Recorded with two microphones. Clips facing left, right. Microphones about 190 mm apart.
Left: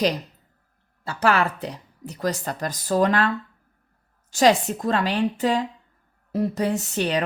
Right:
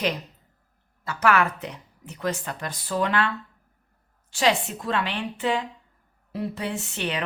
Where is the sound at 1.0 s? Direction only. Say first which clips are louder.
Left 1 dB; 30° left (ahead or behind).